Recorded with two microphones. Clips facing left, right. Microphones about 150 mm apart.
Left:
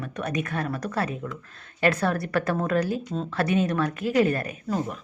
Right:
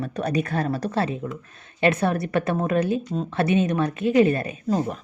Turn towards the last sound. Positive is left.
turn(degrees=-25)  # may be behind; listen again after turning